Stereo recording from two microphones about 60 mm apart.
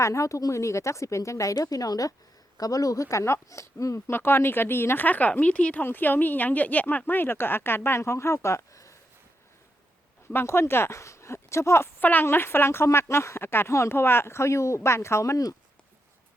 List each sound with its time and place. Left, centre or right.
0.0 s a woman's voice: left
4.1 s speech: left
5.0 s a woman's voice: left
5.8 s speech: left
10.2 s speech: left
11.9 s speech: left